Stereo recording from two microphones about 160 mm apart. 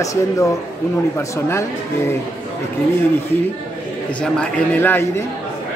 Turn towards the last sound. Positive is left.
turn(degrees=15)  # may be behind; listen again after turning